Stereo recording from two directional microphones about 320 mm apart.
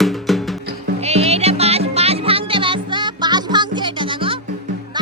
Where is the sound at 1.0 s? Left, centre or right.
Centre.